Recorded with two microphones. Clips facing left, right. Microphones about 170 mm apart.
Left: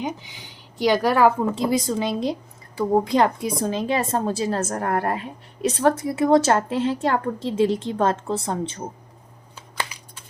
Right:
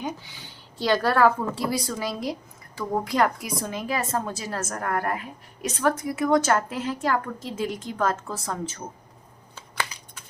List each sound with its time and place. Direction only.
0.0 s a woman's voice: 20° left (ahead or behind)